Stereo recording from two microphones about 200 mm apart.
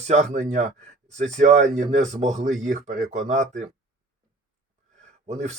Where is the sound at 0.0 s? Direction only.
35° right (ahead or behind).